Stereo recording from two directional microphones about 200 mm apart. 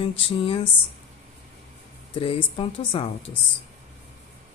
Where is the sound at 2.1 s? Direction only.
25° left (ahead or behind).